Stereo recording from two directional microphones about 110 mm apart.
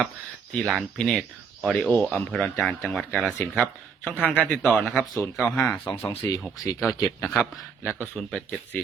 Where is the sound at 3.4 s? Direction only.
20° left (ahead or behind).